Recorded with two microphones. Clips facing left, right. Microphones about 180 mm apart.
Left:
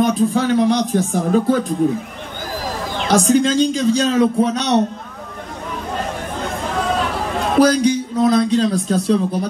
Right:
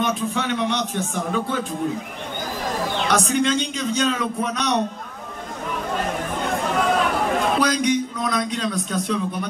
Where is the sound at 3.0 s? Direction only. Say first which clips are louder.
Left 7 dB; 30° left (ahead or behind).